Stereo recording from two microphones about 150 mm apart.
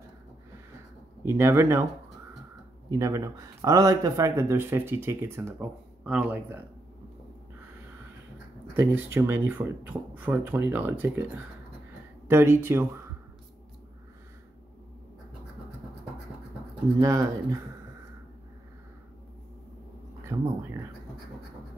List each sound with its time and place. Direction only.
1.2 s speech: 15° right (ahead or behind)
2.9 s speech: 20° right (ahead or behind)
8.7 s speech: 15° right (ahead or behind)
17.0 s speech: 20° right (ahead or behind)
20.3 s speech: 15° right (ahead or behind)